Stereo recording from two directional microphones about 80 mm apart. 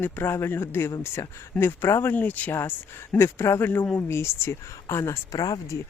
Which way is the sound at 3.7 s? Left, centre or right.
Left.